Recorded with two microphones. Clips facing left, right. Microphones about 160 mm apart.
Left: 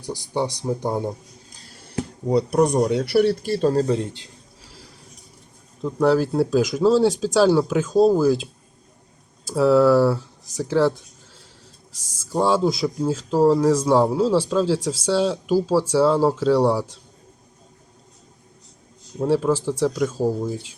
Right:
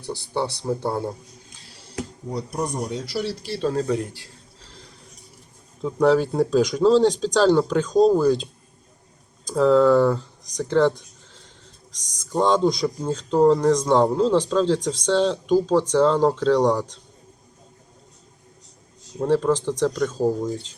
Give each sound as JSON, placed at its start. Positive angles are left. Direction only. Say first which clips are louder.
{"t": 0.0, "sound": "speech", "louder": "left 1 dB", "side_deg": 15}
{"t": 1.5, "sound": "a sound", "louder": "left 1 dB", "side_deg": 40}
{"t": 2.2, "sound": "speech", "louder": "left 10 dB", "side_deg": 75}
{"t": 4.6, "sound": "a sound", "louder": "even", "side_deg": 5}
{"t": 5.8, "sound": "speech", "louder": "even", "side_deg": 0}
{"t": 19.2, "sound": "speech", "louder": "even", "side_deg": 5}